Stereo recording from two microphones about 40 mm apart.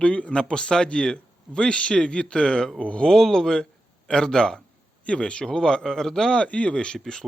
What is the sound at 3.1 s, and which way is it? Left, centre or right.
A man's voice, centre.